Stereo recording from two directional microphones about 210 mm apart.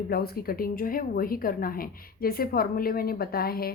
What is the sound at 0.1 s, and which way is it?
Speech, 45° left (ahead or behind).